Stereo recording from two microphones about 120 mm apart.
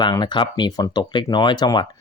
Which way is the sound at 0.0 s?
40° left (ahead or behind).